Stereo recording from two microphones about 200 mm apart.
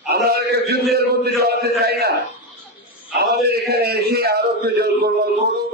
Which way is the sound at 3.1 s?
50° right (ahead or behind).